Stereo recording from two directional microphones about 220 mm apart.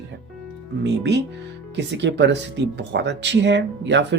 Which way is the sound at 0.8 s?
50° right (ahead or behind).